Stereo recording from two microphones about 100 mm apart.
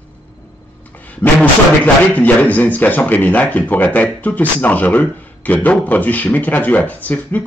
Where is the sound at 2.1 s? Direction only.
15° left (ahead or behind).